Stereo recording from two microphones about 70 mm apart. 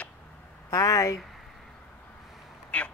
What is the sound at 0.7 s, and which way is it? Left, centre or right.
Speech, left.